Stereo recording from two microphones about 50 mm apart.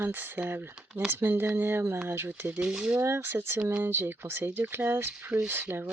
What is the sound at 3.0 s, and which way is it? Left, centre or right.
Speech, right.